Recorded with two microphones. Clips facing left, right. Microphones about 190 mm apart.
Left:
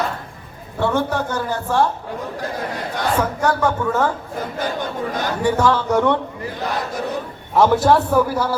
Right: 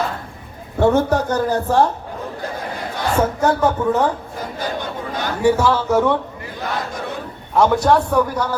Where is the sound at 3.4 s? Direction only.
20° right (ahead or behind).